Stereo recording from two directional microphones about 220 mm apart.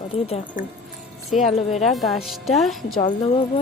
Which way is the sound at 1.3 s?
Centre (ahead or behind).